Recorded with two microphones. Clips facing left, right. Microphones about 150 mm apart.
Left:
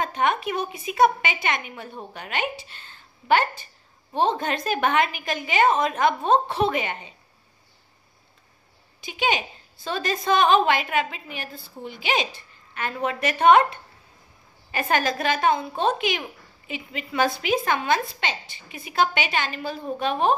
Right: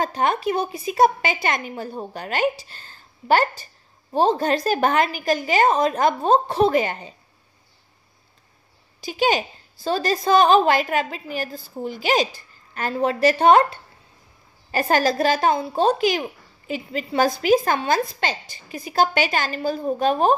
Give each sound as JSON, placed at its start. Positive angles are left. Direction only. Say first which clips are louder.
{"t": 0.0, "sound": "a woman's voice", "louder": "right 2 dB", "side_deg": -35}
{"t": 9.0, "sound": "a woman's voice", "louder": "right 5 dB", "side_deg": -40}